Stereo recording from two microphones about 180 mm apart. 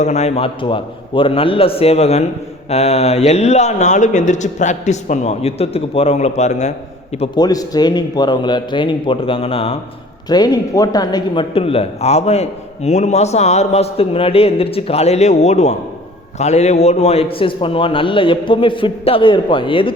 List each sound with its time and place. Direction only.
0.0 s speech: 40° left (ahead or behind)
7.3 s a man's voice: 20° left (ahead or behind)